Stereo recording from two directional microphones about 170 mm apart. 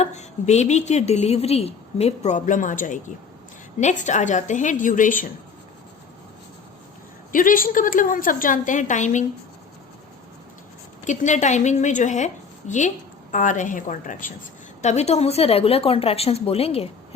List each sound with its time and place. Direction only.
0.0 s a woman's voice: 40° left (ahead or behind)
7.3 s a woman's voice: 55° left (ahead or behind)
11.0 s a woman's voice: 45° left (ahead or behind)